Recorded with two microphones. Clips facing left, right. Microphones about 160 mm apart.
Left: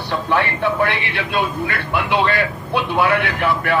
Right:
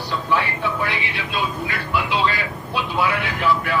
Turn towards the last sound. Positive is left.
turn(degrees=60)  # may be behind; listen again after turning